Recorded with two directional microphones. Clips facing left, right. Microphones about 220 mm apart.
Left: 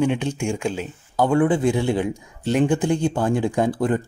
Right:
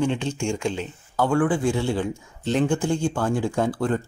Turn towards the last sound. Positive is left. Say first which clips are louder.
# left 3 dB
turn(degrees=15)  # may be behind; listen again after turning